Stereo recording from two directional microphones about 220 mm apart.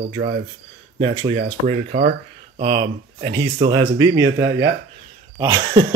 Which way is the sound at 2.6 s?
20° right (ahead or behind).